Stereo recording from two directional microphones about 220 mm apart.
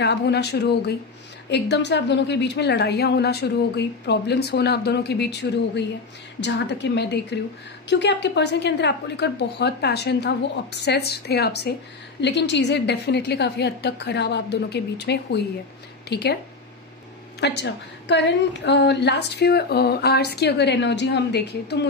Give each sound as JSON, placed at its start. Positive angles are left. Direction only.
{"t": 0.0, "sound": "a woman's voice", "side_deg": 50}
{"t": 17.4, "sound": "a woman's voice", "side_deg": 50}